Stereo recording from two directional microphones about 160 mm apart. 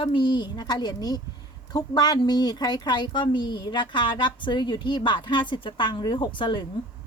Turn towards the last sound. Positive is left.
turn(degrees=30)  # may be behind; listen again after turning